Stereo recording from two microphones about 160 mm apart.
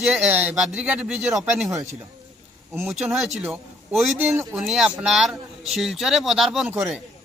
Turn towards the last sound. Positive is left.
turn(degrees=-5)  # may be behind; listen again after turning